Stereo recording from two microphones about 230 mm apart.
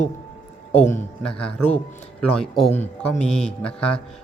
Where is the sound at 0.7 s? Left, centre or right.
Left.